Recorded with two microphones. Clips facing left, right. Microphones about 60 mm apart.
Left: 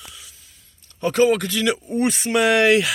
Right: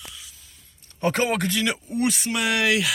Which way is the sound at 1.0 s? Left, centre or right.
Right.